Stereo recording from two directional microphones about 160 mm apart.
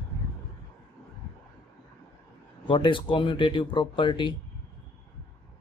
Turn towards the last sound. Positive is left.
turn(degrees=30)  # may be behind; listen again after turning